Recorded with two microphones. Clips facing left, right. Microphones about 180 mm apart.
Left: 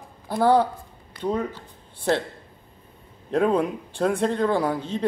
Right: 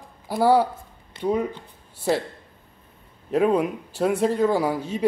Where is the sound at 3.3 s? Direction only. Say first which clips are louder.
Right 1 dB; 5° right (ahead or behind).